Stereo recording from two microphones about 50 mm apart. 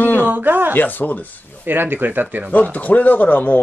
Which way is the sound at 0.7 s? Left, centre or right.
Left.